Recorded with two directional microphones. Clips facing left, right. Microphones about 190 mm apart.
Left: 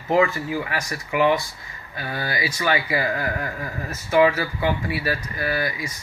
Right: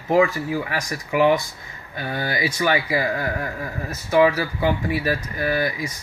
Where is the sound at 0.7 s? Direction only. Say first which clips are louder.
Right 3 dB; 15° right (ahead or behind).